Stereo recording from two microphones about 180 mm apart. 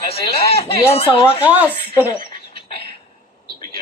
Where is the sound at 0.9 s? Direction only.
30° left (ahead or behind).